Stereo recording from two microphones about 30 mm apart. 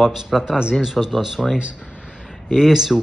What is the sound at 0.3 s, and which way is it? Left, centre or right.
Speech, centre.